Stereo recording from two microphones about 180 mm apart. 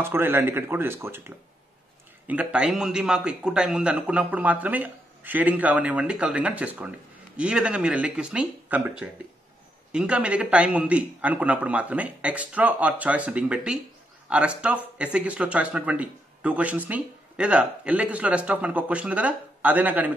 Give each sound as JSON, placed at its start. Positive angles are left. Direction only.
{"t": 0.0, "sound": "speech", "side_deg": -10}